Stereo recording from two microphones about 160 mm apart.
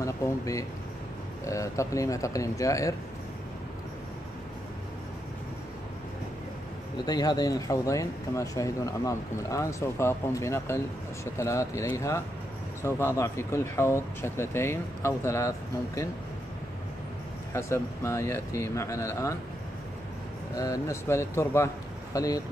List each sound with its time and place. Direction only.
0.0 s speech: 20° left (ahead or behind)
7.1 s speech: 25° left (ahead or behind)
17.5 s speech: 15° left (ahead or behind)
20.5 s speech: 20° left (ahead or behind)